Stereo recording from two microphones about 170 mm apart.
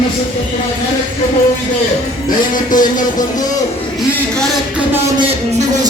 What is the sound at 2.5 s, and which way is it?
Speech, 50° left (ahead or behind).